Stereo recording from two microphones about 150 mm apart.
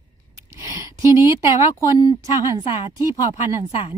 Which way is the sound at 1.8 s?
25° left (ahead or behind).